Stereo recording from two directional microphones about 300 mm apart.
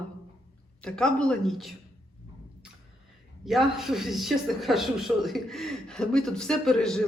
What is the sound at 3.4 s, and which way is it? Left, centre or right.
Speech, centre.